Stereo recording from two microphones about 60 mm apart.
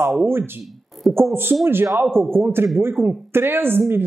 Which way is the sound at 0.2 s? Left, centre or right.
Right.